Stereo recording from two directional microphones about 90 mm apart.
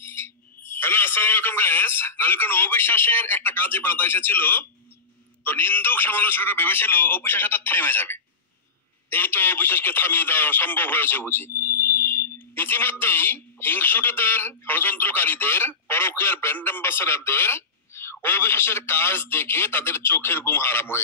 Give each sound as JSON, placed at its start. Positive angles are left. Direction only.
{"t": 0.0, "sound": "speech", "side_deg": 25}